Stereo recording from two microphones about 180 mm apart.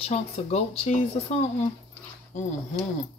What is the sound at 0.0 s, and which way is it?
Speech, 35° left (ahead or behind).